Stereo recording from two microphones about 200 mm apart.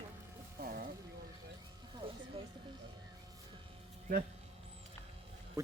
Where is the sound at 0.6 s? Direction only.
45° right (ahead or behind).